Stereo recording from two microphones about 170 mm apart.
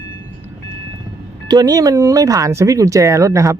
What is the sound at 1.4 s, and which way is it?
Speech, 25° right (ahead or behind).